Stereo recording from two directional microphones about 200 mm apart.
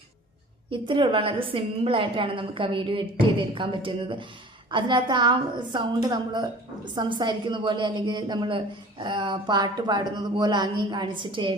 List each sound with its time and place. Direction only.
0.7 s a woman's voice: 25° right (ahead or behind)